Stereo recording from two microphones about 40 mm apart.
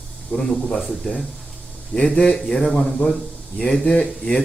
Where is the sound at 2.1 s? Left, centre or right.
Left.